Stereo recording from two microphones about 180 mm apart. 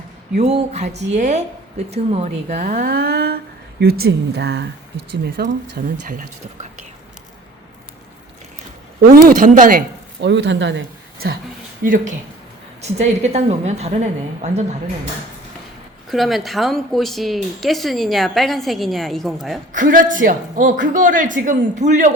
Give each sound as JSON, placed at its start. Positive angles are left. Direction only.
{"t": 0.3, "sound": "speech", "side_deg": -35}
{"t": 9.2, "sound": "speech", "side_deg": -45}
{"t": 10.2, "sound": "speech", "side_deg": -75}
{"t": 11.8, "sound": "speech", "side_deg": -50}
{"t": 13.0, "sound": "speech", "side_deg": -40}
{"t": 16.0, "sound": "a woman's voice", "side_deg": 0}
{"t": 19.7, "sound": "speech", "side_deg": -45}